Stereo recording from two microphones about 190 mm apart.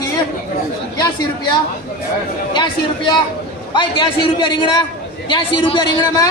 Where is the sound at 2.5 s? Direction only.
25° left (ahead or behind).